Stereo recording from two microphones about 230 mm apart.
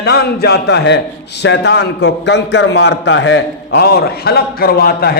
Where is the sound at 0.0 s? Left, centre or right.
Left.